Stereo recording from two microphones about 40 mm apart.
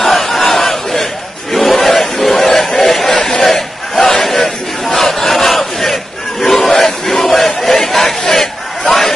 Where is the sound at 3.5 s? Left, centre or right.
Centre.